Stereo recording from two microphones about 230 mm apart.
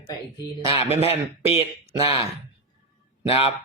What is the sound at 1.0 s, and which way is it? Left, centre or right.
Speech, left.